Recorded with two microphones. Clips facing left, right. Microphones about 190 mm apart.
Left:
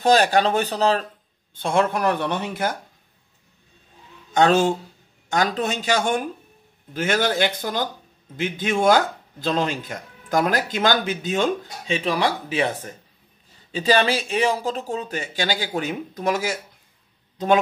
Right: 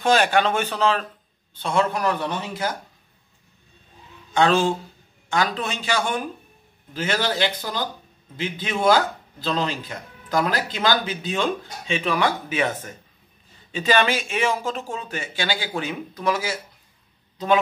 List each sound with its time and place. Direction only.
0.0 s speech: 40° left (ahead or behind)
1.5 s speech: 50° left (ahead or behind)
4.3 s speech: 45° left (ahead or behind)